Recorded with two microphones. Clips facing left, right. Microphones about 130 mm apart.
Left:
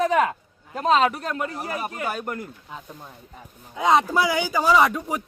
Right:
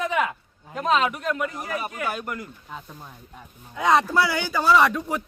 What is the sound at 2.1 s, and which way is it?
Speech, 40° left (ahead or behind).